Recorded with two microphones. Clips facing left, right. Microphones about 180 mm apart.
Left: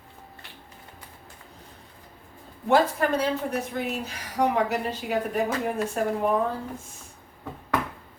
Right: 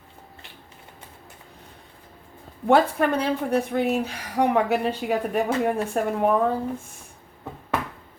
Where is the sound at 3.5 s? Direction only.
55° right (ahead or behind).